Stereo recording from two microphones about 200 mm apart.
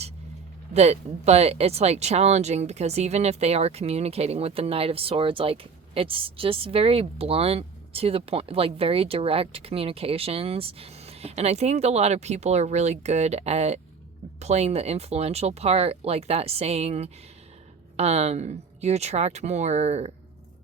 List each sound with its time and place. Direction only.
0.7 s speech: 35° right (ahead or behind)